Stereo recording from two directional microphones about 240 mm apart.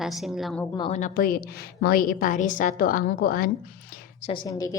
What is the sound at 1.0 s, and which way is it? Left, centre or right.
A woman's voice, left.